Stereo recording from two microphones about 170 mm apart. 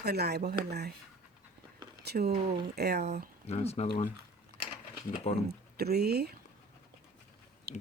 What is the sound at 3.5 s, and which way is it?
Speech, 40° left (ahead or behind).